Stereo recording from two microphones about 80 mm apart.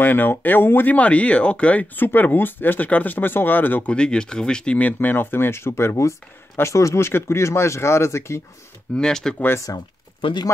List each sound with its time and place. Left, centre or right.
0.0 s speech: left
8.9 s speech: centre
9.7 s speech: left